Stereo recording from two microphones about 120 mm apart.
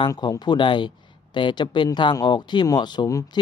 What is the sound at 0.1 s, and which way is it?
Speech, 35° left (ahead or behind).